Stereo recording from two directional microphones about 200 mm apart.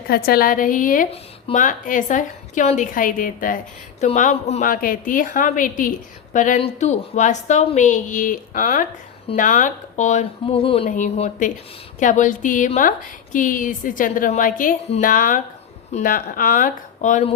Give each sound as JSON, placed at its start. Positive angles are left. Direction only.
{"t": 0.1, "sound": "speech", "side_deg": 50}